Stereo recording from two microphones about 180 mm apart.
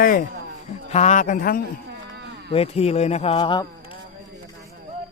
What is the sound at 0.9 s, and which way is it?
Speech, 40° left (ahead or behind).